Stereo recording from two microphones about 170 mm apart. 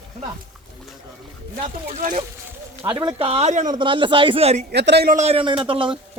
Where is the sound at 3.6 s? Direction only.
25° right (ahead or behind).